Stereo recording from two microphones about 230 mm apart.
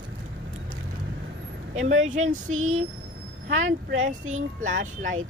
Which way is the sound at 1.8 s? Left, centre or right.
Right.